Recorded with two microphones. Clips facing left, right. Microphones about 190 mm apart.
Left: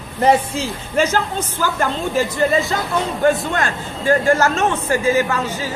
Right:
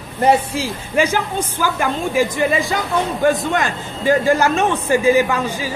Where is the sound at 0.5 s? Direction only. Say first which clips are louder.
Right 1 dB; 10° right (ahead or behind).